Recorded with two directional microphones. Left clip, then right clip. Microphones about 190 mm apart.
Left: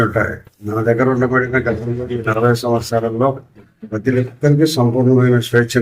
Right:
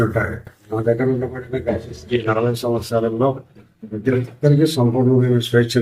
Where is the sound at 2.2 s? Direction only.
Centre (ahead or behind).